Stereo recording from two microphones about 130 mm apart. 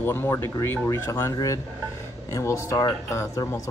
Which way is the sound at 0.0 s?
15° left (ahead or behind).